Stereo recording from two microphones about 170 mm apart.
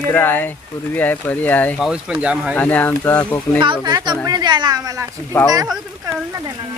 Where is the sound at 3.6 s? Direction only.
25° right (ahead or behind).